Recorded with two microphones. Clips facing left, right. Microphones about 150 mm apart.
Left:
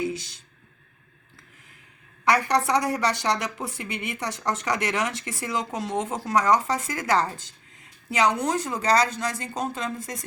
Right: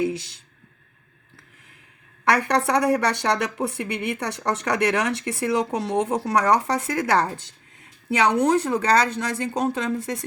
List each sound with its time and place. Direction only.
0.0 s a woman's voice: 60° right (ahead or behind)
2.2 s a woman's voice: 60° right (ahead or behind)